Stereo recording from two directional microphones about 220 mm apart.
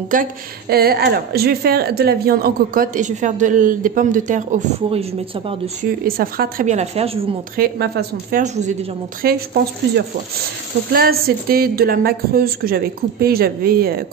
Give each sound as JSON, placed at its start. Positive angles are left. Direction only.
{"t": 0.1, "sound": "a woman's voice", "side_deg": -40}
{"t": 7.5, "sound": "a woman's voice", "side_deg": -45}
{"t": 9.2, "sound": "a woman's voice", "side_deg": -45}
{"t": 10.9, "sound": "a woman's voice", "side_deg": -45}